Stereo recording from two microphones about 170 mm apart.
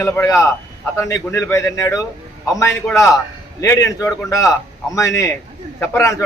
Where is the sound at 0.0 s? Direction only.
15° left (ahead or behind).